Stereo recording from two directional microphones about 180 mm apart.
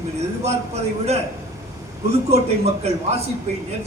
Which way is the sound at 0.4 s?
35° right (ahead or behind).